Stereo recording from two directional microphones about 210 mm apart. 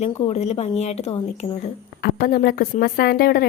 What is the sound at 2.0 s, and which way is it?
Speech, 45° left (ahead or behind).